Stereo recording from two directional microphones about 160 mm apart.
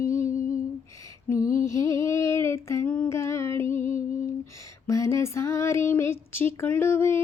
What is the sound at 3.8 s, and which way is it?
Female singing, 50° left (ahead or behind).